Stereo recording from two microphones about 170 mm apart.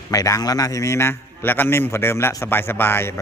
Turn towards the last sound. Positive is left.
turn(degrees=15)  # may be behind; listen again after turning